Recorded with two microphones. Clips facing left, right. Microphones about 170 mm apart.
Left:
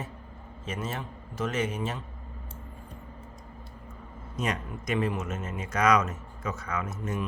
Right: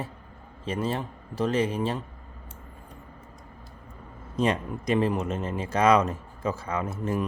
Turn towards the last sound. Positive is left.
turn(degrees=-30)  # may be behind; listen again after turning